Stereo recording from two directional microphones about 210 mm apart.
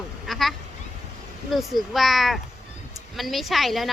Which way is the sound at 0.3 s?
Centre (ahead or behind).